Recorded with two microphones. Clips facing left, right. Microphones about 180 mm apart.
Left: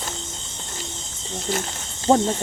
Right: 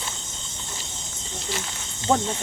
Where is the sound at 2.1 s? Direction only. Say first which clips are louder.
Left 5 dB; 35° left (ahead or behind).